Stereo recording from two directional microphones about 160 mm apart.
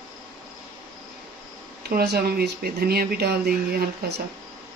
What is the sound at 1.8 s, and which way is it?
Speech, 75° right (ahead or behind).